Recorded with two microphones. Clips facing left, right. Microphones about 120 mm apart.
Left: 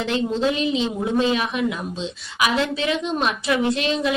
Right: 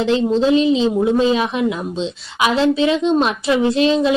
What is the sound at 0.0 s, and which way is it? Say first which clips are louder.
Speech: right 6 dB; 30° right (ahead or behind).